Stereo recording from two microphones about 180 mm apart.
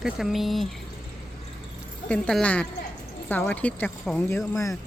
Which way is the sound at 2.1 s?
5° left (ahead or behind).